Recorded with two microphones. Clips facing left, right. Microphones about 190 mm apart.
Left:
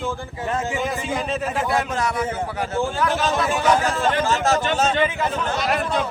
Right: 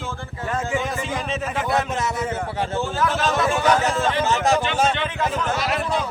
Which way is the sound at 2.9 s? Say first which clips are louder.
Right 2 dB; centre (ahead or behind).